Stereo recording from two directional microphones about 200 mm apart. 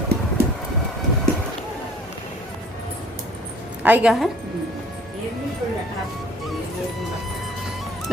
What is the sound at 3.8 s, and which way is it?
Speech, 10° right (ahead or behind).